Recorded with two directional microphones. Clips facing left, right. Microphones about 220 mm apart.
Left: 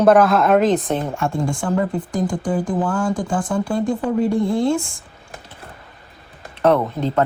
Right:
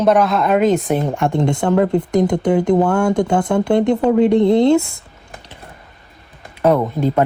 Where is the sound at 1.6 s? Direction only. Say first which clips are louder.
Right 7 dB; 65° right (ahead or behind).